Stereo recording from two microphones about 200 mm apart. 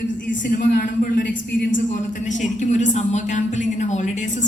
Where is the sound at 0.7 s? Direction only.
45° left (ahead or behind).